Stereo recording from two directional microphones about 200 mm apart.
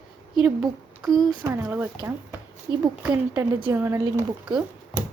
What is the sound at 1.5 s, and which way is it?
Speech, 10° right (ahead or behind).